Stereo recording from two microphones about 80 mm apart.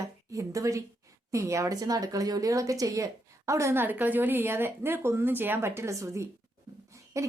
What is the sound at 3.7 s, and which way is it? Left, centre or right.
Speech, right.